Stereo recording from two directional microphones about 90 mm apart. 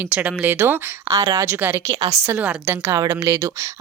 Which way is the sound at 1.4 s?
25° right (ahead or behind).